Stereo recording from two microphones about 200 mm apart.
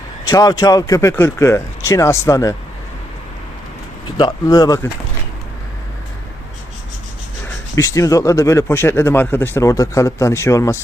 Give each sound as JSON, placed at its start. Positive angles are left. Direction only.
{"t": 0.3, "sound": "speech", "side_deg": 20}
{"t": 4.2, "sound": "speech", "side_deg": 20}
{"t": 7.8, "sound": "speech", "side_deg": 15}